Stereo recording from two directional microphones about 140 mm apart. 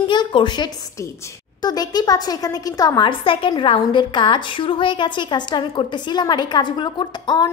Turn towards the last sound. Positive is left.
turn(degrees=30)  # may be behind; listen again after turning